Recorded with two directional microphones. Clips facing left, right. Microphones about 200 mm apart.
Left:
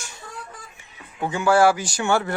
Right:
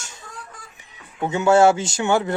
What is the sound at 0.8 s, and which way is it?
Speech, 25° right (ahead or behind).